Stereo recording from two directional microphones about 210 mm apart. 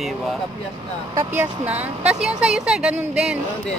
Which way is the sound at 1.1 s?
15° right (ahead or behind).